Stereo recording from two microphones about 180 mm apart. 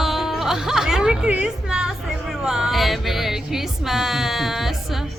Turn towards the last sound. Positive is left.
turn(degrees=0)  # may be behind; listen again after turning